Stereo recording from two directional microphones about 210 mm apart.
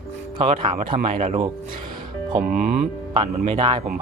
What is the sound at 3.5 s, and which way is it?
Speech, 25° right (ahead or behind).